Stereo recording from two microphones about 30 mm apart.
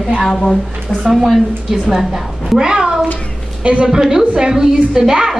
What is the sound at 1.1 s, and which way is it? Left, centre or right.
A woman's voice, centre.